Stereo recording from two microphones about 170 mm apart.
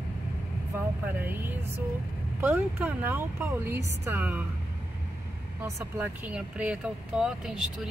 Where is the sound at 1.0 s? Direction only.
10° right (ahead or behind).